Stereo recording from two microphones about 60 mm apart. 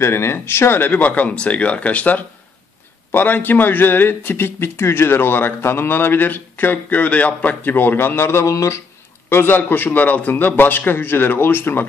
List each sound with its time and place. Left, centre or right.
0.0 s a man's voice: left
9.3 s a man's voice: left